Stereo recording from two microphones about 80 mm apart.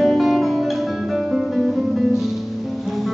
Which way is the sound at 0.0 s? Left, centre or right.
Centre.